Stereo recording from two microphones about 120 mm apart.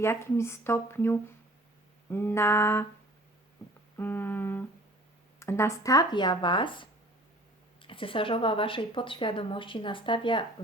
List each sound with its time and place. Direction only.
0.0 s speech: 20° left (ahead or behind)
3.9 s humming: 15° left (ahead or behind)
5.4 s speech: 20° left (ahead or behind); by 10.4 s 45° left (ahead or behind)